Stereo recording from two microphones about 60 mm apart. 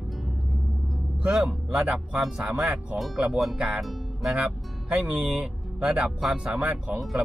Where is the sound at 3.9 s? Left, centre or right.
Centre.